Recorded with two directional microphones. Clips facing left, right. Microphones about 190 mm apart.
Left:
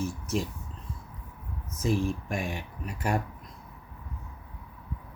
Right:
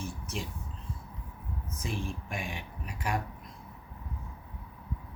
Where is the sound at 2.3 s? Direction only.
45° left (ahead or behind).